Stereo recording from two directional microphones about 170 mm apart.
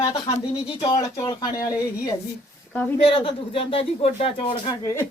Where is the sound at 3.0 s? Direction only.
35° left (ahead or behind).